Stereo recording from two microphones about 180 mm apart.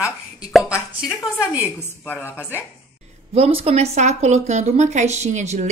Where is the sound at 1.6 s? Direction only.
10° left (ahead or behind).